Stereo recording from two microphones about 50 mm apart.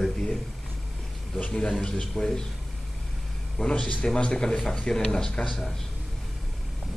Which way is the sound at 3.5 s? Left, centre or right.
Centre.